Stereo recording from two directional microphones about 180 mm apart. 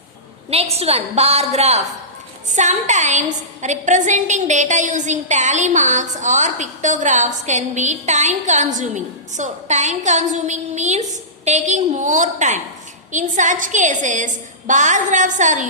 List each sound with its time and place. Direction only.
0.5 s a woman's voice: 35° right (ahead or behind)